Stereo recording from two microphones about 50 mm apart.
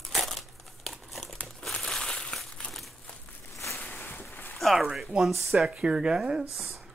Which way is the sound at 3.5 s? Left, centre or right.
Left.